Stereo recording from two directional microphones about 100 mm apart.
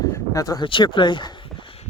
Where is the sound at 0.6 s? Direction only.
55° left (ahead or behind).